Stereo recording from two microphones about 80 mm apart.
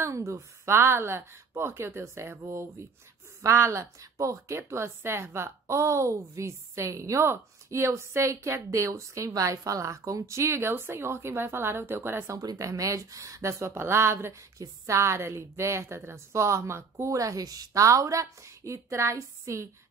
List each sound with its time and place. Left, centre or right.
0.0 s a woman's voice: right
3.4 s a woman's voice: right
12.4 s a woman's voice: right